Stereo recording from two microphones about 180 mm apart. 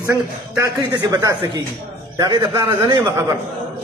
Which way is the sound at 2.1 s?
20° right (ahead or behind).